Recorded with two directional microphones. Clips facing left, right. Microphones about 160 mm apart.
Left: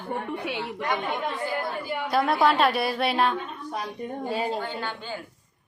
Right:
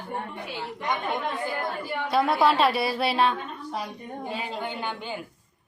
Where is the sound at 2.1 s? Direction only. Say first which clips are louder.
Even; centre (ahead or behind).